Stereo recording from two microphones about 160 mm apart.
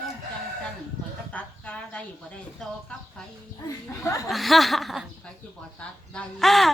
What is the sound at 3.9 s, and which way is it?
Speech, 20° left (ahead or behind).